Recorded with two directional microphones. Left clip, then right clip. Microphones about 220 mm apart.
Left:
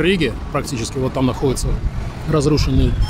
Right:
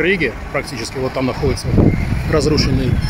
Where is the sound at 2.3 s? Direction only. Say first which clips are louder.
Right 2 dB; 10° left (ahead or behind).